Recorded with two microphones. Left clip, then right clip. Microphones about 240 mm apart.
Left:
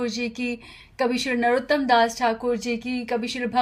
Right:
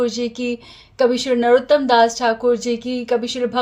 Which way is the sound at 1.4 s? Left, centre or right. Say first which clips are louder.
Right 8 dB; left.